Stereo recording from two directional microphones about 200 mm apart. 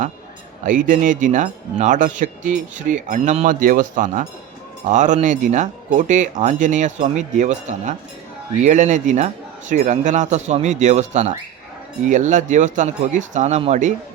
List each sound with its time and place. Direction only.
0.6 s speech: 40° right (ahead or behind)